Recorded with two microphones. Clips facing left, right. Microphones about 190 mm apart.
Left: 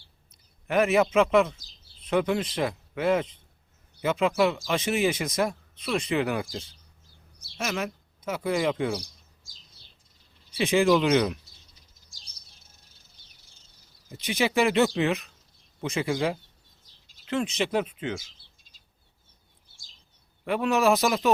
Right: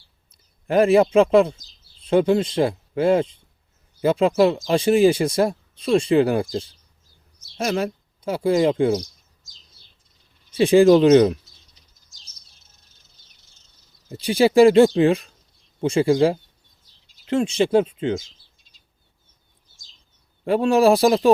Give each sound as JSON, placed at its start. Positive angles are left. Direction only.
{"t": 0.3, "sound": "a man's voice", "side_deg": -30}
{"t": 10.6, "sound": "speech", "side_deg": -35}
{"t": 14.1, "sound": "speech", "side_deg": -35}
{"t": 20.4, "sound": "speech", "side_deg": -30}